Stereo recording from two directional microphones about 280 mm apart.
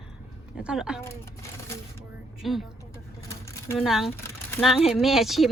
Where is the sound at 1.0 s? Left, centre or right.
Centre.